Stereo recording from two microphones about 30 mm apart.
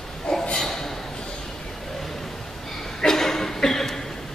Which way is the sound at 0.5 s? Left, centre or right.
Centre.